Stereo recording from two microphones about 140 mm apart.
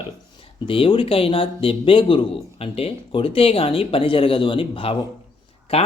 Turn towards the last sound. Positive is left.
turn(degrees=40)  # may be behind; listen again after turning